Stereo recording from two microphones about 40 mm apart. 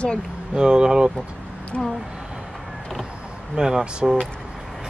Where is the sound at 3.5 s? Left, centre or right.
Centre.